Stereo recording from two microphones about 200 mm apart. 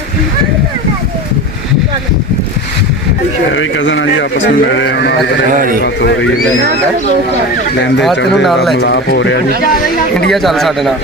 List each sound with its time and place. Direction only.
3.5 s speech: 70° left (ahead or behind)
5.5 s a man's voice: 45° right (ahead or behind)
5.8 s speech: 60° left (ahead or behind)
8.7 s speech: 55° left (ahead or behind)
10.2 s speech: centre (ahead or behind)